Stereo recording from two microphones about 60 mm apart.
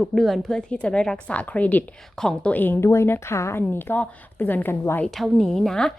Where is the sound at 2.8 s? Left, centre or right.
Left.